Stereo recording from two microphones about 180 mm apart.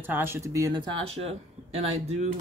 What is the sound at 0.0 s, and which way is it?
Speech, 10° right (ahead or behind).